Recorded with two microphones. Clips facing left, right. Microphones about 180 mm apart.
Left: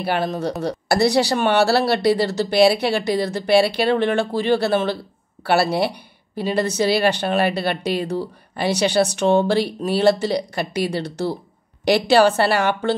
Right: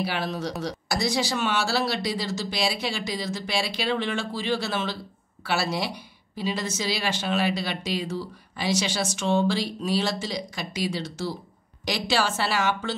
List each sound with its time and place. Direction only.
0.0 s a woman's voice: 50° left (ahead or behind)